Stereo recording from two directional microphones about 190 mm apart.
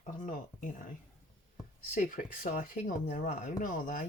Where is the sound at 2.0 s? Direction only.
45° left (ahead or behind).